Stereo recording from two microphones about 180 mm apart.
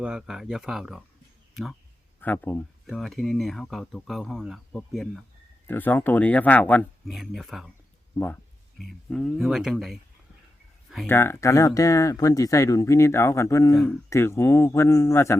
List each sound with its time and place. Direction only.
0.0 s speech: 5° right (ahead or behind)
2.2 s speech: 10° left (ahead or behind)
9.0 s speech: centre (ahead or behind)
11.0 s speech: 15° left (ahead or behind)